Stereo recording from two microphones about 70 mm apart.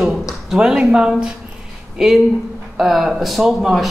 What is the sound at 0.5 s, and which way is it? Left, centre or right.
A man's voice, centre.